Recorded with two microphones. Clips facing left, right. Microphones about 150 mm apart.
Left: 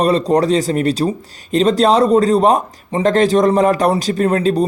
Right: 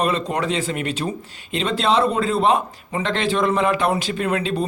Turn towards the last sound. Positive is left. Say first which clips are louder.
# left 7 dB
turn(degrees=40)  # may be behind; listen again after turning